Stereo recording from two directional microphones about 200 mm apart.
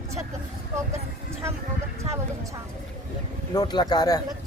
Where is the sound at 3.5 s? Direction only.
20° left (ahead or behind).